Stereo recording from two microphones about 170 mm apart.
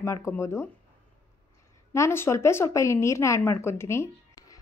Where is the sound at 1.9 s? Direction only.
15° left (ahead or behind).